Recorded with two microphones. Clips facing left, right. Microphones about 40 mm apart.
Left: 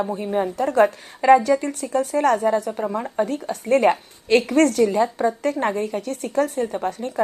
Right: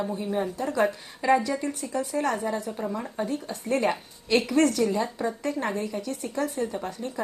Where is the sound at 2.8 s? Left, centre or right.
Left.